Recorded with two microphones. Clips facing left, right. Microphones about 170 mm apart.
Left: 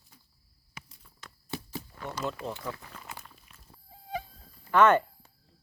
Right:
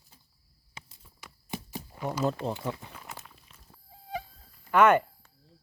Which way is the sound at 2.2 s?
35° right (ahead or behind).